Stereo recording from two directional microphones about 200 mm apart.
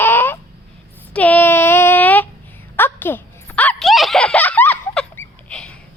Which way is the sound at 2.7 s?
10° left (ahead or behind).